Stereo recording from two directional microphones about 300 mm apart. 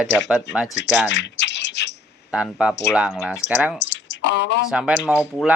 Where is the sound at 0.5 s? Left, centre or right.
Centre.